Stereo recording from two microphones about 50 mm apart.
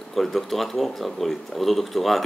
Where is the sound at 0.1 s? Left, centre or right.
Centre.